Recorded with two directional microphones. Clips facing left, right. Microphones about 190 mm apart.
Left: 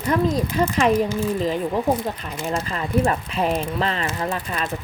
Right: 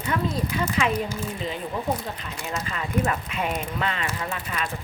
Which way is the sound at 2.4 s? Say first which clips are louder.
Left 5 dB; 35° left (ahead or behind).